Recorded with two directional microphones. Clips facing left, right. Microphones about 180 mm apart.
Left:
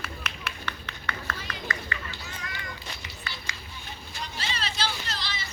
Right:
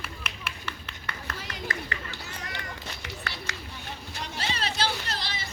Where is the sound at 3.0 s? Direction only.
75° right (ahead or behind).